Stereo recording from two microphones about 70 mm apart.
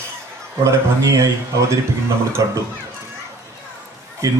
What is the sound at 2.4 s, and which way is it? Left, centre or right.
Speech, right.